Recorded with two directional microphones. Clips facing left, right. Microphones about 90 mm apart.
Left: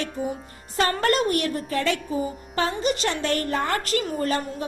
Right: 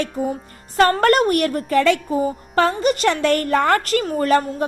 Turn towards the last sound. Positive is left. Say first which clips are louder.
# right 8 dB
turn(degrees=-60)  # may be behind; listen again after turning